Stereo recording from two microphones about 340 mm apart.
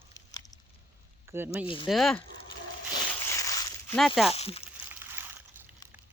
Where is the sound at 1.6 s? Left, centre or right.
Centre.